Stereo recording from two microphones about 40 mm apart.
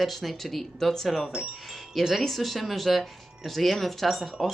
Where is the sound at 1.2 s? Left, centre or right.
Centre.